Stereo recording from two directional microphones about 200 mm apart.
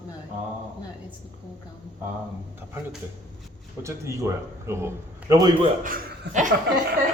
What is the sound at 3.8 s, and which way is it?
A man's voice, 15° right (ahead or behind).